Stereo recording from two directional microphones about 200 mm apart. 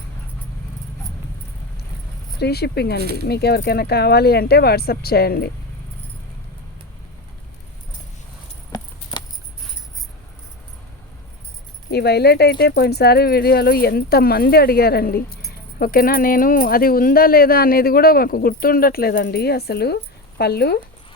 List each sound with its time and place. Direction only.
2.4 s speech: 55° left (ahead or behind)
11.9 s speech: 55° left (ahead or behind)